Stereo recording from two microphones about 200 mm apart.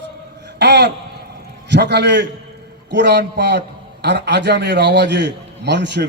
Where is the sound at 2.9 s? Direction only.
55° right (ahead or behind).